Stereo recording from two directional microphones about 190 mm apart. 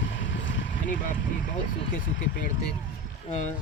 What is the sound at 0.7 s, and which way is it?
Speech, 45° left (ahead or behind).